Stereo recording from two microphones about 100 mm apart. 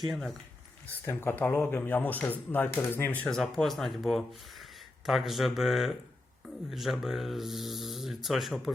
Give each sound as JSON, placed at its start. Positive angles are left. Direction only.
{"t": 0.0, "sound": "speech", "side_deg": 0}
{"t": 1.0, "sound": "speech", "side_deg": 20}
{"t": 3.2, "sound": "speech", "side_deg": 5}